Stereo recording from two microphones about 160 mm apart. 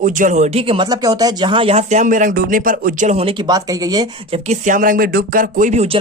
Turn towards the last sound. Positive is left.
turn(degrees=-45)  # may be behind; listen again after turning